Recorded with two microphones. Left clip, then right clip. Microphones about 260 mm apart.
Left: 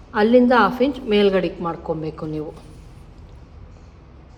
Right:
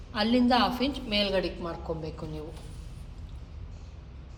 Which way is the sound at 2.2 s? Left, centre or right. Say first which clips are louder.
Left 11 dB; centre.